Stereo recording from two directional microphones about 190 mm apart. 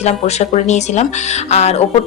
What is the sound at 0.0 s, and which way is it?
A woman's voice, 35° left (ahead or behind).